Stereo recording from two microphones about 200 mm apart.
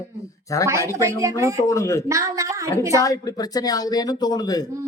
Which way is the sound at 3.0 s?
15° left (ahead or behind).